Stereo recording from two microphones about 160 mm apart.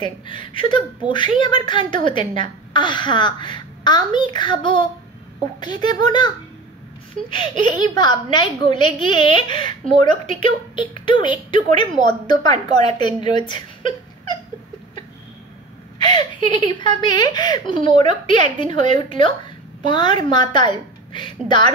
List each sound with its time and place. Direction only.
0.3 s speech: 30° left (ahead or behind)
16.0 s speech: 30° left (ahead or behind)